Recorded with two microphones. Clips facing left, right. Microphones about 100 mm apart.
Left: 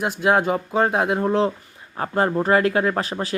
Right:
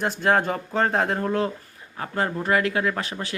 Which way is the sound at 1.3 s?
25° left (ahead or behind).